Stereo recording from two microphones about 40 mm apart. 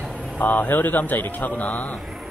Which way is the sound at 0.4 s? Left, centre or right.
Left.